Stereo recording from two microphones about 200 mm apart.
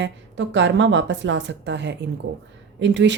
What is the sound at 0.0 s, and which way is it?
Speech, 65° right (ahead or behind).